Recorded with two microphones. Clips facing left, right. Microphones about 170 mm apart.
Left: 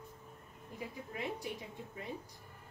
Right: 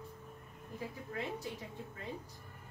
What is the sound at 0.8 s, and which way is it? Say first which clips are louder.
Speech: right 1 dB; 15° left (ahead or behind).